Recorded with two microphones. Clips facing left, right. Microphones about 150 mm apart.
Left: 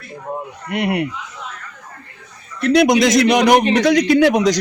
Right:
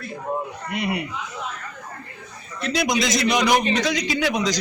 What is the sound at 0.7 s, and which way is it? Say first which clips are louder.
Speech: left 7 dB; 65° left (ahead or behind).